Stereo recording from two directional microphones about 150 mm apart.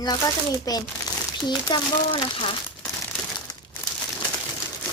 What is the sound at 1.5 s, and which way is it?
Speech, 30° left (ahead or behind).